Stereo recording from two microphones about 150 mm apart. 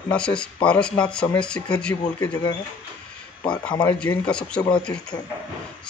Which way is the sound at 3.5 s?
5° left (ahead or behind).